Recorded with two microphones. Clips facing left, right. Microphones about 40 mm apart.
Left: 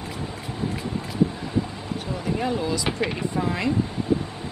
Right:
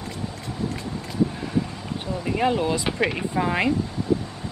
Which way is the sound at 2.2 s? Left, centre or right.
Right.